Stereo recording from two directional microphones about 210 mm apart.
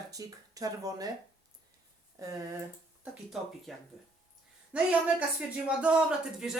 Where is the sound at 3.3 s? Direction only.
Centre (ahead or behind).